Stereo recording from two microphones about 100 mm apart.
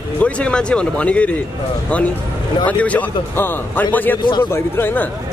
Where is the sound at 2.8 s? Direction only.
15° left (ahead or behind).